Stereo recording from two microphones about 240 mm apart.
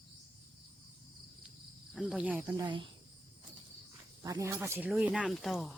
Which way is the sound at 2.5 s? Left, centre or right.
Centre.